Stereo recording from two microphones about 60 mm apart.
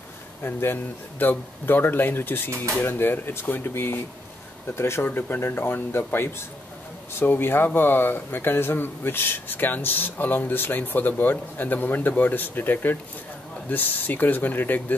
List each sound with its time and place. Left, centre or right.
0.4 s speech: left
5.0 s speech: left